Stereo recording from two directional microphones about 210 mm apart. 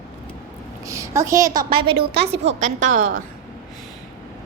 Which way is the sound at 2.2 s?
30° right (ahead or behind).